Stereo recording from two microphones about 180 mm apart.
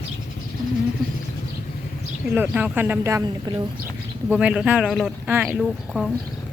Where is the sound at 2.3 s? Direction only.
10° right (ahead or behind).